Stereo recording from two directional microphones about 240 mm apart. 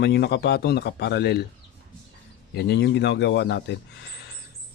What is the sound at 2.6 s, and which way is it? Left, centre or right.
Speech, left.